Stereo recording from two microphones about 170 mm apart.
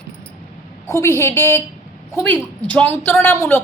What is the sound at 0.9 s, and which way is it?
A woman's voice, 15° left (ahead or behind).